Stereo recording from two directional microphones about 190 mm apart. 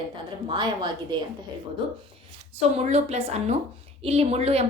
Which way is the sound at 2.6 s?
35° right (ahead or behind).